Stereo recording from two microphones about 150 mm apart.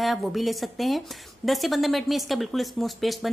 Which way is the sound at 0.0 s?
Centre (ahead or behind).